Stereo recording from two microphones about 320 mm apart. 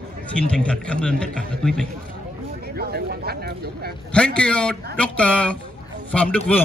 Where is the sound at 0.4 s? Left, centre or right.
Centre.